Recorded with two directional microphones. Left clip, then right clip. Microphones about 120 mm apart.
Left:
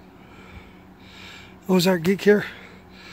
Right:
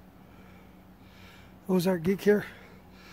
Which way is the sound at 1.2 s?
5° left (ahead or behind).